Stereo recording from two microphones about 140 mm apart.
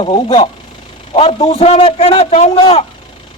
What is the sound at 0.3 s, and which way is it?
A man's voice, 40° left (ahead or behind).